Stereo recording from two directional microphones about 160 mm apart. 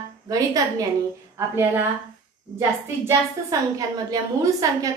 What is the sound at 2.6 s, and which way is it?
A woman's voice, 20° right (ahead or behind).